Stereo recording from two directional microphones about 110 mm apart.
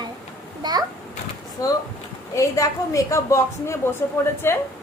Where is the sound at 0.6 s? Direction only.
40° right (ahead or behind).